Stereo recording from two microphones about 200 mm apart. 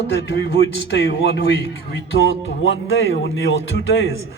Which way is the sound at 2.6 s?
75° left (ahead or behind).